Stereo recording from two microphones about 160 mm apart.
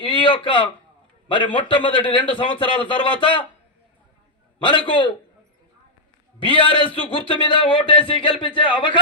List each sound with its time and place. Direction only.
0.0 s a man's voice: 30° left (ahead or behind)
4.6 s a man's voice: 30° left (ahead or behind)
6.4 s a man's voice: 35° left (ahead or behind)